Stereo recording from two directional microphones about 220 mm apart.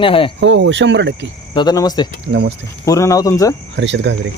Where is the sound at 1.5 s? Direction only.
20° left (ahead or behind).